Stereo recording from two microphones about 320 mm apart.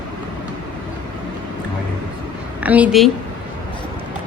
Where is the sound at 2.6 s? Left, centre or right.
Centre.